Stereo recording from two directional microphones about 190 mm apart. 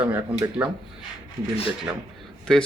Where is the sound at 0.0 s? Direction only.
10° right (ahead or behind).